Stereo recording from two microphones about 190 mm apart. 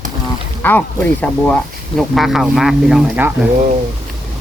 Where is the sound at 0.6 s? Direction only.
10° left (ahead or behind); by 3.5 s 5° right (ahead or behind).